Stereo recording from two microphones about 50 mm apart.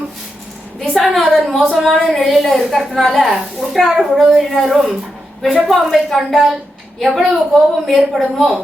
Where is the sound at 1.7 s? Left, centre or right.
Centre.